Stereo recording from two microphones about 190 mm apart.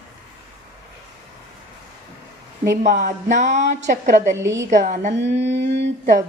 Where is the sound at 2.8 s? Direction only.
40° right (ahead or behind).